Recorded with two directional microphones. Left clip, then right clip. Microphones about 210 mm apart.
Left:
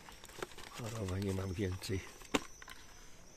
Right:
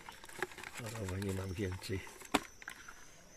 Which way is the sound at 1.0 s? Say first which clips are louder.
Left 2 dB; 10° left (ahead or behind).